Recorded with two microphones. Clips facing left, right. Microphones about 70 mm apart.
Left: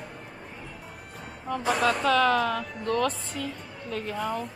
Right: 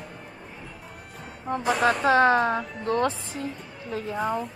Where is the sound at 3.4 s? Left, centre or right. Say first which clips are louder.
Right 1 dB; left.